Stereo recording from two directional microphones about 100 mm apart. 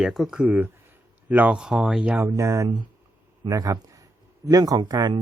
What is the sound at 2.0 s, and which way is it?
Speech, 15° right (ahead or behind).